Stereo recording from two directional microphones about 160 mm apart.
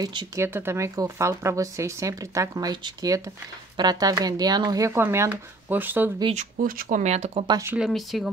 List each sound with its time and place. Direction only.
0.0 s speech: 25° right (ahead or behind)
0.5 s speech: 15° right (ahead or behind)
6.5 s speech: 60° right (ahead or behind); by 7.4 s 45° right (ahead or behind)
7.6 s speech: 5° right (ahead or behind)